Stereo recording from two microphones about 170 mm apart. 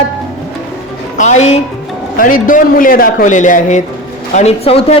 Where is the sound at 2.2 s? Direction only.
55° left (ahead or behind).